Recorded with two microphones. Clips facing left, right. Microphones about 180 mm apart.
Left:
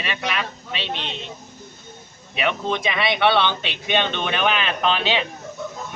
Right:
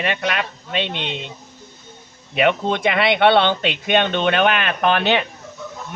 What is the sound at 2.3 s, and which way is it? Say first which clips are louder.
Speech: right 5 dB; 55° right (ahead or behind).